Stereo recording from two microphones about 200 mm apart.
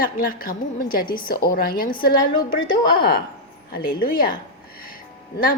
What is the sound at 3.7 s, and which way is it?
Speech, 50° left (ahead or behind).